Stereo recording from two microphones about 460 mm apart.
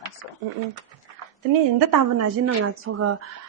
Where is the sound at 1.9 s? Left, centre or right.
Right.